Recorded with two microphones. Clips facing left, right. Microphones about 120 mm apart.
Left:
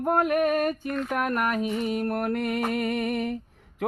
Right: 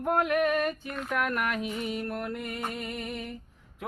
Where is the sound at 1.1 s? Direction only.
40° left (ahead or behind); by 3.3 s 65° left (ahead or behind).